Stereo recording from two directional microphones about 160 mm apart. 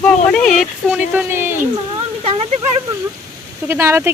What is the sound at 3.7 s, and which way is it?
Speech, 15° right (ahead or behind).